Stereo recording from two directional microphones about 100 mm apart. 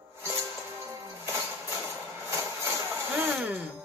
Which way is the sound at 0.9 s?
25° right (ahead or behind).